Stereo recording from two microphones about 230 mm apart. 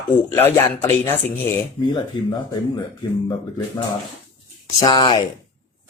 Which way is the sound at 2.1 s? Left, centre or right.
Left.